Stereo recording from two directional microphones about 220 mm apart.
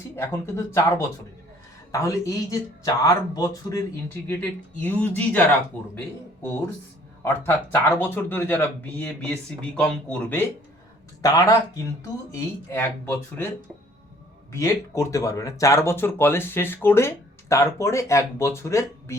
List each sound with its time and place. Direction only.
0.2 s speech: 10° left (ahead or behind)
14.5 s speech: 15° left (ahead or behind)